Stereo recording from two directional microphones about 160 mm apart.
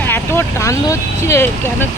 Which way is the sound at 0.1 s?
15° left (ahead or behind).